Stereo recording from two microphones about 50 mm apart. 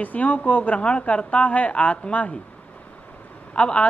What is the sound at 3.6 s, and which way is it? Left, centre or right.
Speech, left.